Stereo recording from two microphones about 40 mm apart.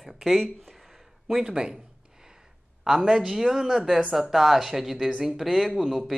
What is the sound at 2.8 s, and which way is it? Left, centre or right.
Speech, centre.